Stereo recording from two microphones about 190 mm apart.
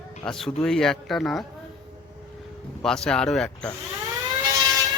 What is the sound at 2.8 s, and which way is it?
Speech, 5° left (ahead or behind).